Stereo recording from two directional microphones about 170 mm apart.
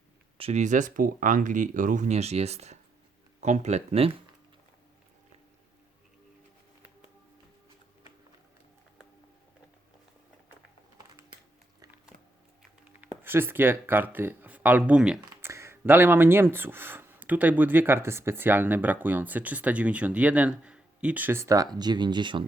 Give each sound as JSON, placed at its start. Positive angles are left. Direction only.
{"t": 0.3, "sound": "speech", "side_deg": -40}
{"t": 13.2, "sound": "speech", "side_deg": -15}